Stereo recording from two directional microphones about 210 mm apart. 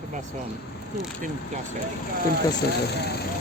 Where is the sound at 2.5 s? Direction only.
50° left (ahead or behind).